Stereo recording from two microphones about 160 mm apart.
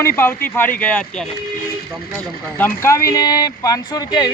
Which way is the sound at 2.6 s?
15° left (ahead or behind).